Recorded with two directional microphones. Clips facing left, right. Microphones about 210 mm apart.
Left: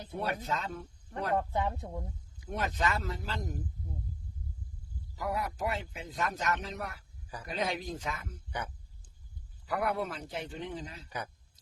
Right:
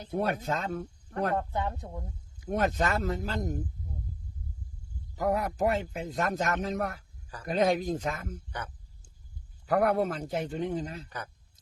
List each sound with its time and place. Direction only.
0.1 s speech: 45° right (ahead or behind)
2.4 s speech: 50° right (ahead or behind)
5.1 s speech: 45° right (ahead or behind)
8.4 s speech: 10° left (ahead or behind)
9.6 s speech: 45° right (ahead or behind)